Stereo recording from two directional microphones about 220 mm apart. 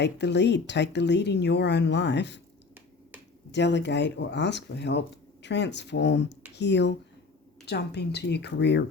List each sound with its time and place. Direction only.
0.0 s speech: 50° left (ahead or behind)
3.5 s speech: 55° left (ahead or behind)